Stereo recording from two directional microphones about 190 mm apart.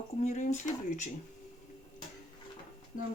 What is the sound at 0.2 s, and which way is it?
Speech, 40° left (ahead or behind).